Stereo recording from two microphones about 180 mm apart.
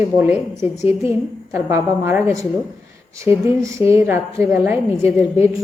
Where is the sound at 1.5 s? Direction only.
15° right (ahead or behind).